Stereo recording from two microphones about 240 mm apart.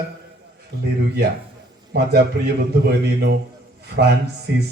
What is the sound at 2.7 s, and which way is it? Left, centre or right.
Speech, right.